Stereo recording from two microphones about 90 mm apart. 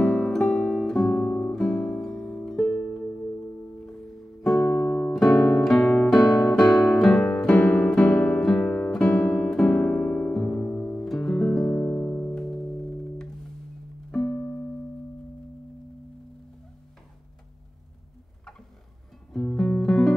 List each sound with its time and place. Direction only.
0.0 s music: 5° left (ahead or behind)
1.2 s music: 20° left (ahead or behind)
1.5 s music: 5° left (ahead or behind)
4.4 s music: 5° left (ahead or behind)
4.7 s music: 15° left (ahead or behind)
5.1 s guitar: 5° left (ahead or behind)
5.7 s music: 5° left (ahead or behind)
6.5 s guitar: 5° left (ahead or behind)
10.6 s music: 20° left (ahead or behind)
10.9 s music: 5° left (ahead or behind)
14.3 s keyboard: 25° left (ahead or behind)
19.3 s music: 5° left (ahead or behind)